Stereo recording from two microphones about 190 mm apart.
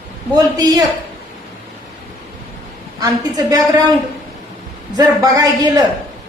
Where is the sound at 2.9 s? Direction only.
20° right (ahead or behind).